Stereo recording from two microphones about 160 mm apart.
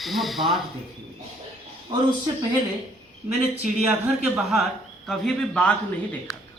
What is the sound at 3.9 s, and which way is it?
Speech, 5° right (ahead or behind).